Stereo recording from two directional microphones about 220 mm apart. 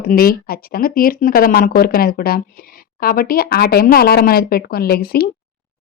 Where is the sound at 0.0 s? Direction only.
40° left (ahead or behind).